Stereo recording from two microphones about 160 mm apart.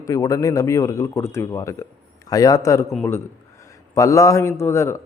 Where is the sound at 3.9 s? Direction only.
20° left (ahead or behind).